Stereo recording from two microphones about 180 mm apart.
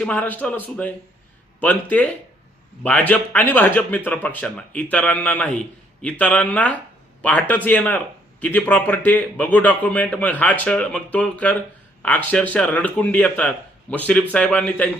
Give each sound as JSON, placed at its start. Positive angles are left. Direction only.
{"t": 0.0, "sound": "a man's voice", "side_deg": 10}